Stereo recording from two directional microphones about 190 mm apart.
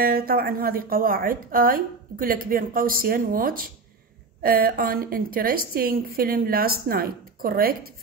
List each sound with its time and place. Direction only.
0.0 s a woman's voice: 50° right (ahead or behind)